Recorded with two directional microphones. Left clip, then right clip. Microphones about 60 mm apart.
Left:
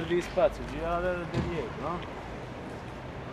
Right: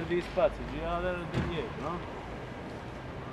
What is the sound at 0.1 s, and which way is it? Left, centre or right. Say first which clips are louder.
Speech: left 2 dB; left.